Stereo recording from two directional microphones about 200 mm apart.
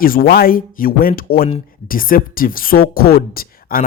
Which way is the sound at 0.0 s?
45° left (ahead or behind).